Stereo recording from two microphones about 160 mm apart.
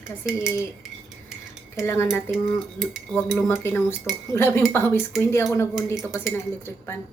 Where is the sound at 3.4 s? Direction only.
15° left (ahead or behind).